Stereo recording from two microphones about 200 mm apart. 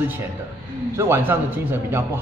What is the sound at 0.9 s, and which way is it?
A man's voice, 10° right (ahead or behind).